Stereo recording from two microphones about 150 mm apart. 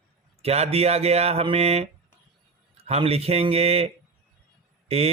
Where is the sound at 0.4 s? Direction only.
45° right (ahead or behind).